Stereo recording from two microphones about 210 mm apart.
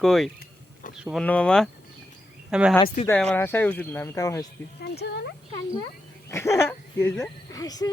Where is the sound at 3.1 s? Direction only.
5° left (ahead or behind).